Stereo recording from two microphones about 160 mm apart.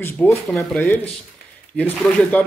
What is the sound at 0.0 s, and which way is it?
Speech, 15° left (ahead or behind).